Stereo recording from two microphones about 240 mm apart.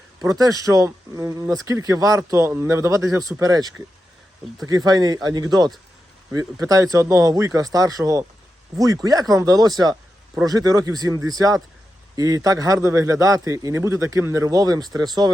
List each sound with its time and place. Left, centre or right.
0.2 s a man's voice: centre